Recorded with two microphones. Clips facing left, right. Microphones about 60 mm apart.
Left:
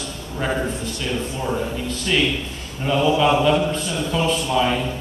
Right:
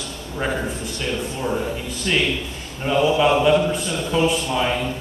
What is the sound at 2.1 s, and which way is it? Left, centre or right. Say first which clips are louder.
A man's voice: even; centre.